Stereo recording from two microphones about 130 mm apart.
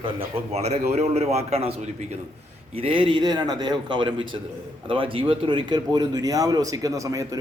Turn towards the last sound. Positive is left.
turn(degrees=-25)  # may be behind; listen again after turning